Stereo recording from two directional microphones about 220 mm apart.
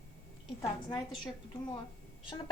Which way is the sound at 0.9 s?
20° left (ahead or behind).